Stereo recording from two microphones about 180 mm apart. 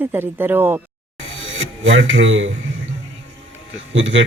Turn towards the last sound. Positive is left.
turn(degrees=-90)